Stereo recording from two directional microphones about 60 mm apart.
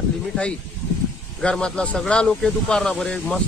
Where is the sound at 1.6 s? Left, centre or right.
Centre.